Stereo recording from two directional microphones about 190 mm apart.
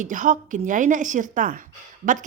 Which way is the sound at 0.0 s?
40° right (ahead or behind).